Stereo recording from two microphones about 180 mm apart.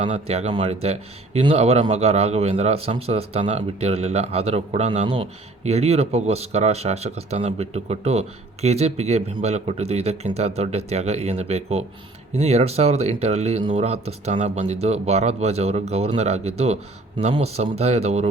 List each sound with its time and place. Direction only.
0.1 s speech: 35° right (ahead or behind)